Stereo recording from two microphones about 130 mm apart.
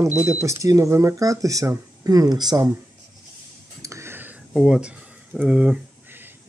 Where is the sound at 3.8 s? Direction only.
20° right (ahead or behind).